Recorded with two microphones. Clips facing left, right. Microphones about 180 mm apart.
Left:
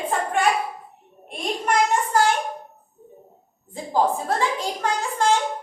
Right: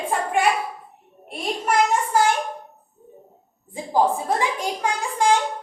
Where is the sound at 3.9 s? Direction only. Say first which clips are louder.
Right 1 dB; 15° right (ahead or behind).